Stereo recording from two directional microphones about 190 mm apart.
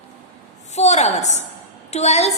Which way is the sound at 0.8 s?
35° left (ahead or behind).